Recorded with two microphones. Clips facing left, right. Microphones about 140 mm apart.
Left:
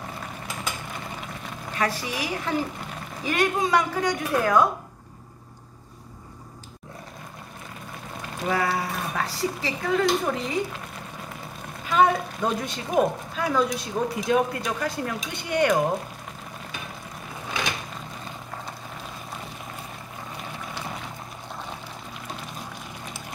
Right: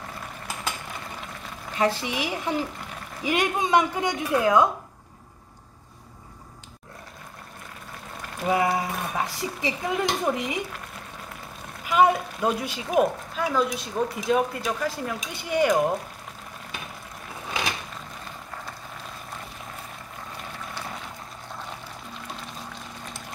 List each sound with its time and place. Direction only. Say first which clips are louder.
1.8 s a woman's voice: right 3 dB; 25° right (ahead or behind)
8.5 s speech: right 2 dB; 20° right (ahead or behind)
11.8 s a woman's voice: right 1 dB; 10° right (ahead or behind)